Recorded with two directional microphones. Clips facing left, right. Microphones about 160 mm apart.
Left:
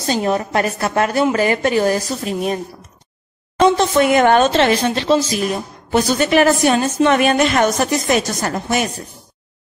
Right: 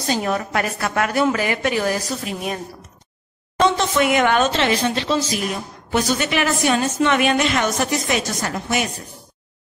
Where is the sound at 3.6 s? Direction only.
40° left (ahead or behind).